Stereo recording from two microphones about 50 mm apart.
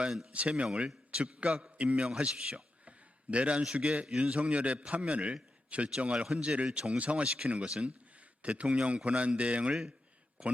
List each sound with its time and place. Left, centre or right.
0.3 s a man's voice: right